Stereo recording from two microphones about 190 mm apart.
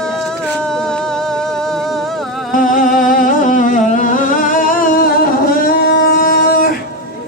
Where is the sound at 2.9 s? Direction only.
45° left (ahead or behind).